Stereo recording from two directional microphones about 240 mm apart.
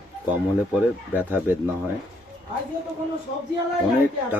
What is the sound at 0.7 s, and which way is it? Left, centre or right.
Speech, centre.